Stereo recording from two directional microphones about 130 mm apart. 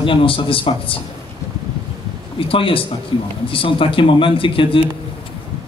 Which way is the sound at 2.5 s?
45° left (ahead or behind).